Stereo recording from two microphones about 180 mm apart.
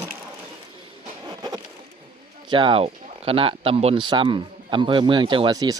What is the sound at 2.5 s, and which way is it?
Speech, 25° right (ahead or behind).